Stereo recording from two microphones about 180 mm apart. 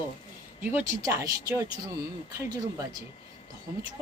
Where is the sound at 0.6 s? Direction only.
10° right (ahead or behind).